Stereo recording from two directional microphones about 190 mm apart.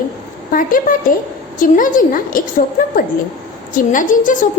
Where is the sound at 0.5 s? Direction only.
45° left (ahead or behind).